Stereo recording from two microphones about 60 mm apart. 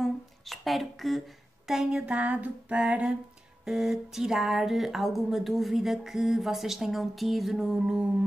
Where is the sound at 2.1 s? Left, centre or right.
Right.